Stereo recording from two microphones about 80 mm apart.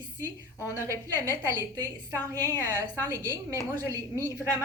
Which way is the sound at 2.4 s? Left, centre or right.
Left.